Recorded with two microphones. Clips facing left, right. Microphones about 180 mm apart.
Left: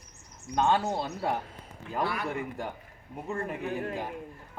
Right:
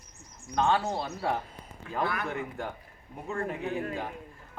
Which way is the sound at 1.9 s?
10° left (ahead or behind).